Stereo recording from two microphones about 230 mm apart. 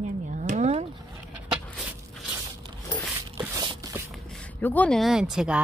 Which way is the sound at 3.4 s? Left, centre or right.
Centre.